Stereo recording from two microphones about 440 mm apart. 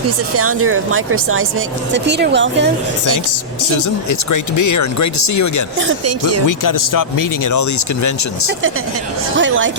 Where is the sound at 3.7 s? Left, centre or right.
Left.